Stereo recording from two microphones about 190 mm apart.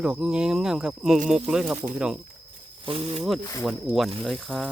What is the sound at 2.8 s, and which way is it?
Speech, 30° right (ahead or behind).